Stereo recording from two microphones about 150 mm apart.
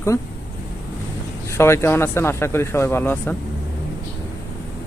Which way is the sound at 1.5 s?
15° left (ahead or behind).